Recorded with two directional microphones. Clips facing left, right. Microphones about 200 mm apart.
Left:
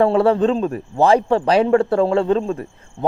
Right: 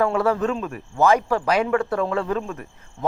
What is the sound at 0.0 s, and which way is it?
Speech, 30° left (ahead or behind).